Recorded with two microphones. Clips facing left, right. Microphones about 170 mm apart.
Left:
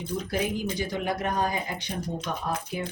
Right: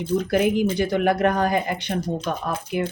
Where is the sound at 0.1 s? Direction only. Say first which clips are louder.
Right 9 dB; 65° right (ahead or behind).